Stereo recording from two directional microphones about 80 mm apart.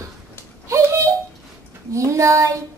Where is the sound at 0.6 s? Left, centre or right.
Right.